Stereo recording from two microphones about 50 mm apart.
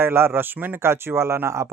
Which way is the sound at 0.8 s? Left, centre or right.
Right.